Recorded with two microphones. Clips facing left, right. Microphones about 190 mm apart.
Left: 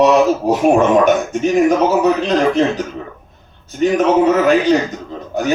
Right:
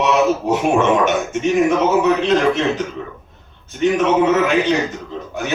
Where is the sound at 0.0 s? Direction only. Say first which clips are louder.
Left 4 dB; 35° left (ahead or behind).